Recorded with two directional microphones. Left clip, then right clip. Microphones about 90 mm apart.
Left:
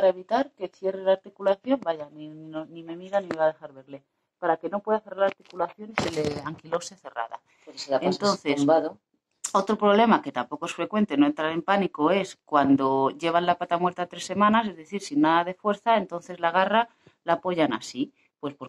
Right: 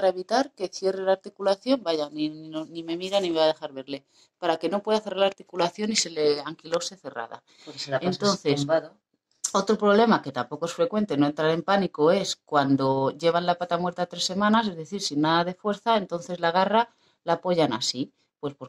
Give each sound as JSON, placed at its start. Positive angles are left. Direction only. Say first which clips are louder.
{"t": 0.9, "sound": "speech", "louder": "left 1 dB", "side_deg": -35}
{"t": 1.7, "sound": "speech", "louder": "right 2 dB", "side_deg": -50}
{"t": 5.9, "sound": "speech", "louder": "right 4 dB", "side_deg": -20}
{"t": 8.0, "sound": "speech", "louder": "even", "side_deg": -45}
{"t": 8.4, "sound": "speech", "louder": "right 1 dB", "side_deg": -25}
{"t": 8.6, "sound": "speech", "louder": "left 7 dB", "side_deg": -5}
{"t": 9.5, "sound": "speech", "louder": "even", "side_deg": -25}
{"t": 14.8, "sound": "speech", "louder": "left 1 dB", "side_deg": -25}
{"t": 15.2, "sound": "speech", "louder": "left 2 dB", "side_deg": -35}